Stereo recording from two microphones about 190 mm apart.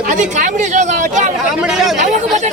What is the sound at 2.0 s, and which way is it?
Speech, 40° right (ahead or behind).